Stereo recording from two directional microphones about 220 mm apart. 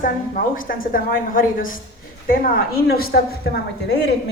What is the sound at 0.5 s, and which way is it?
A woman's voice, 40° left (ahead or behind).